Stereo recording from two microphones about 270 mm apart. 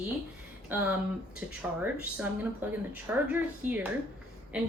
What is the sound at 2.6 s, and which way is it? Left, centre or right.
A woman's voice, centre.